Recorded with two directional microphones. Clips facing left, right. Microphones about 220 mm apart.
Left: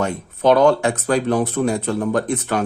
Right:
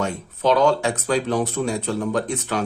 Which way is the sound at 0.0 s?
55° left (ahead or behind).